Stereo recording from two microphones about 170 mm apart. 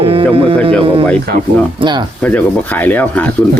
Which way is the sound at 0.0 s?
35° right (ahead or behind).